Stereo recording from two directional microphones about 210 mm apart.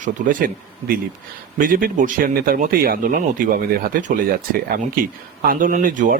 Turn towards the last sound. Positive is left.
turn(degrees=-40)  # may be behind; listen again after turning